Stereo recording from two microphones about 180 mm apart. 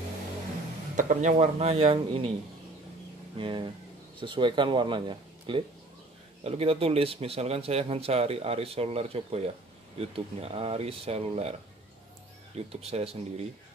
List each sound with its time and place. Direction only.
0.9 s speech: 45° right (ahead or behind)
3.3 s speech: 30° right (ahead or behind)
12.5 s speech: 35° right (ahead or behind)